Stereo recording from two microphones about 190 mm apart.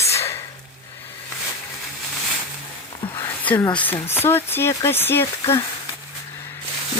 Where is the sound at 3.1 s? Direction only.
10° left (ahead or behind).